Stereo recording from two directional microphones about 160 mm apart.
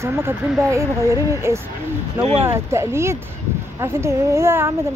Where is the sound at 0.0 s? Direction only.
15° right (ahead or behind).